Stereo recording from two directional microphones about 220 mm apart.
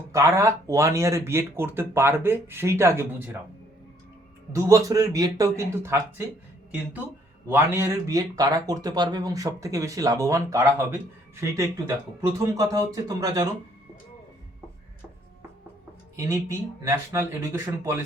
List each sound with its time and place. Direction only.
0.1 s speech: 15° right (ahead or behind)
4.5 s speech: 15° right (ahead or behind)
16.1 s speech: 15° right (ahead or behind)